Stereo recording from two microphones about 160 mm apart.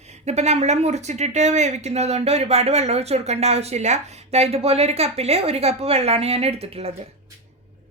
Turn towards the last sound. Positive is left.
turn(degrees=-40)  # may be behind; listen again after turning